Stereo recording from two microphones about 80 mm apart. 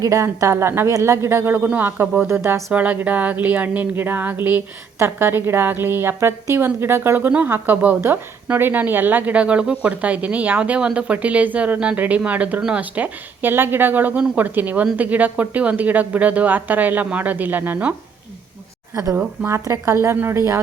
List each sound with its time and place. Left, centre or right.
0.0 s a woman's voice: right
2.7 s a woman's voice: centre
19.1 s a woman's voice: centre
19.5 s a woman's voice: right